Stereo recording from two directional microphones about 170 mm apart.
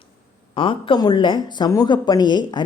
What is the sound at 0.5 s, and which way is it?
Speech, 30° left (ahead or behind).